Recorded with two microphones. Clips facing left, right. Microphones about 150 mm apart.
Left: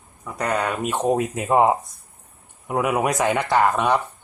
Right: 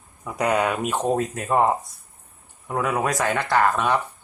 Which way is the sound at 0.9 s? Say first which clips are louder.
Left 2 dB; 10° left (ahead or behind).